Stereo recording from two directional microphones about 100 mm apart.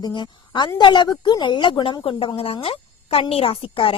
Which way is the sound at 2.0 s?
65° left (ahead or behind).